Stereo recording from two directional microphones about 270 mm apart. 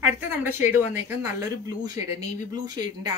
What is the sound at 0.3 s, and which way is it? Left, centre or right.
Speech, centre.